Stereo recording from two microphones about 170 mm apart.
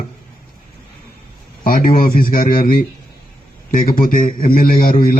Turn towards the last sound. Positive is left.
turn(degrees=55)  # may be behind; listen again after turning